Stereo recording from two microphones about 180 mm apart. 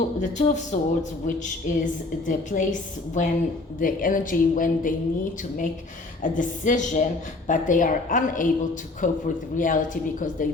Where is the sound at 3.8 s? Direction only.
50° left (ahead or behind).